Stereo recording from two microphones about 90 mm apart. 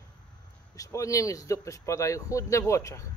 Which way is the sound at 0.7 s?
35° left (ahead or behind).